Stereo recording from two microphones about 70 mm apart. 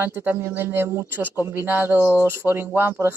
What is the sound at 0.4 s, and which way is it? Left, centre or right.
Speech, right.